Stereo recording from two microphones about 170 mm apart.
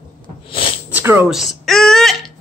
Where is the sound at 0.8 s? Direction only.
10° right (ahead or behind).